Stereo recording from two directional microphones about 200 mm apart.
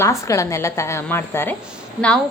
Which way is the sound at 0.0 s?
15° left (ahead or behind).